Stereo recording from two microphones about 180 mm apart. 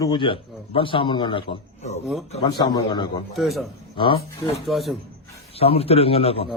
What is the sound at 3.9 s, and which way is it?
Speech, 25° left (ahead or behind).